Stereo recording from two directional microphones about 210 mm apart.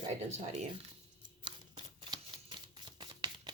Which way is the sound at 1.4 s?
25° right (ahead or behind).